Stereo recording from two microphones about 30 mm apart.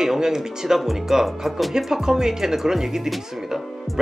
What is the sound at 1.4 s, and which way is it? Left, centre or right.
Speech, centre.